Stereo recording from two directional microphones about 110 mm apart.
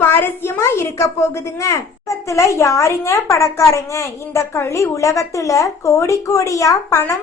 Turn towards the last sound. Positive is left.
turn(degrees=30)  # may be behind; listen again after turning